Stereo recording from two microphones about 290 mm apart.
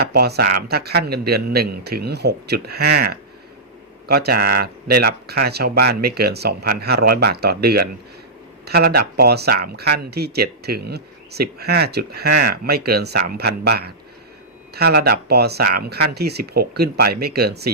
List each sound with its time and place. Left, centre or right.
0.0 s speech: right